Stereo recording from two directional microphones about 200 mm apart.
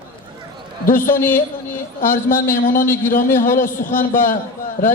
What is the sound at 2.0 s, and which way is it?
Speech, 45° left (ahead or behind).